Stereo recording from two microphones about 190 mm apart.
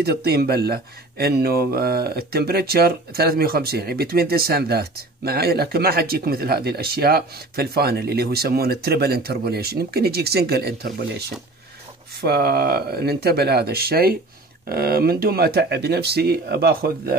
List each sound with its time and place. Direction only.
0.0 s speech: 55° right (ahead or behind)